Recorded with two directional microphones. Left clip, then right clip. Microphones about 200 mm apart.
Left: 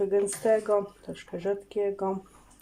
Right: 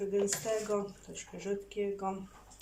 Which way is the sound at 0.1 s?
45° left (ahead or behind).